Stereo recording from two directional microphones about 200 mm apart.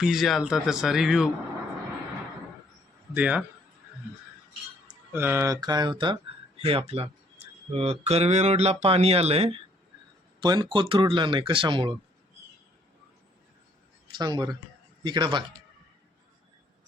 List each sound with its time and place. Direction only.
0.0 s speech: centre (ahead or behind)
3.2 s a man's voice: 5° right (ahead or behind)
4.9 s speech: 10° right (ahead or behind)
14.2 s speech: 20° right (ahead or behind)